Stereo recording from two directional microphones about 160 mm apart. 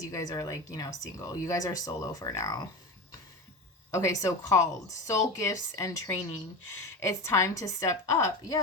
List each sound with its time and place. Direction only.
0.0 s speech: 20° left (ahead or behind)
3.9 s speech: 20° left (ahead or behind)